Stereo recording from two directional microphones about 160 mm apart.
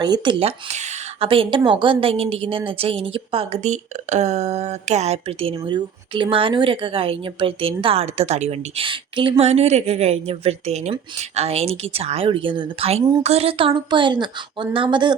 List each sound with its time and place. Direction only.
0.0 s speech: 30° right (ahead or behind)